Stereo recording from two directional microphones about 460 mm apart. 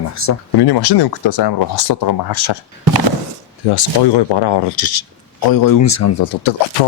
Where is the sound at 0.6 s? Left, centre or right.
Left.